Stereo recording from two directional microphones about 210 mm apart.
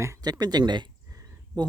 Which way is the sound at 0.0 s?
15° right (ahead or behind).